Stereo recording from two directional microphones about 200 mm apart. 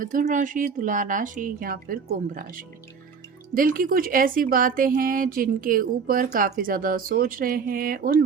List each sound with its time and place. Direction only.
0.0 s speech: 40° right (ahead or behind)